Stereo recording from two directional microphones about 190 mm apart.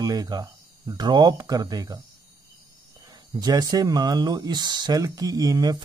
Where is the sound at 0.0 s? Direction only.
20° right (ahead or behind).